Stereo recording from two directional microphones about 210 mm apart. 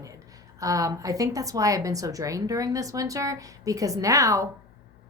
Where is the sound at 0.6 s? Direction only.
15° right (ahead or behind).